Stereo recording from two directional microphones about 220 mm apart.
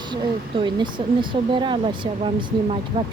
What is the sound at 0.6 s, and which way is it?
Speech, 20° right (ahead or behind).